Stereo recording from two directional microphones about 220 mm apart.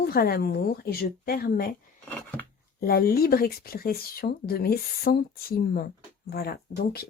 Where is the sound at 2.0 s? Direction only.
10° left (ahead or behind).